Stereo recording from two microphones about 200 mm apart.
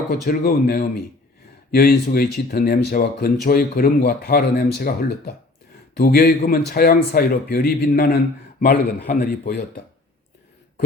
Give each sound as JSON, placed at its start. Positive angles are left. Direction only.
{"t": 0.3, "sound": "speech", "side_deg": 45}